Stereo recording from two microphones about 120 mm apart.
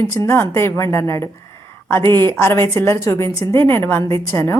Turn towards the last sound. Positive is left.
turn(degrees=25)  # may be behind; listen again after turning